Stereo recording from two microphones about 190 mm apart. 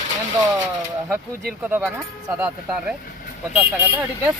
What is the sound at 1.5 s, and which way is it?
Speech, 10° right (ahead or behind).